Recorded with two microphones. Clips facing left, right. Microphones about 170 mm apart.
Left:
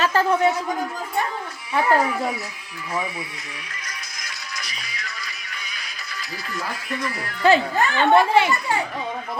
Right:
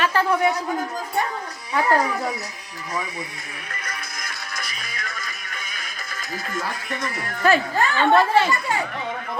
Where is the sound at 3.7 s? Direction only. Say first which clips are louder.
Right 4 dB; 55° right (ahead or behind).